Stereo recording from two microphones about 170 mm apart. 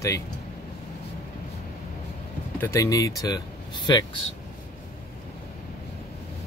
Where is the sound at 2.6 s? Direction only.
15° left (ahead or behind).